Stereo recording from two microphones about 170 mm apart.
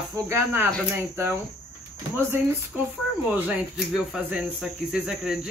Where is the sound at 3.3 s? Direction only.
5° right (ahead or behind).